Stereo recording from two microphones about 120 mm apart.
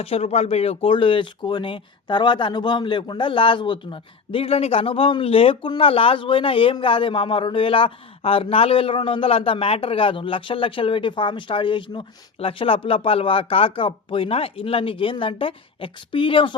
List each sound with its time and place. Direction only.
0.0 s speech: 55° left (ahead or behind)